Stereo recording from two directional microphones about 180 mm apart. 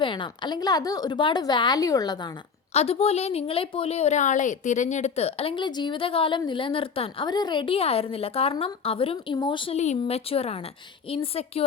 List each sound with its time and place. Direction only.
0.0 s a woman's voice: 25° left (ahead or behind)
2.7 s a woman's voice: 35° left (ahead or behind)